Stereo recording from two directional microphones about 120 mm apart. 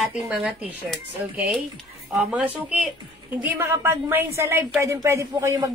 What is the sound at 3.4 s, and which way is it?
A woman's voice, 20° right (ahead or behind).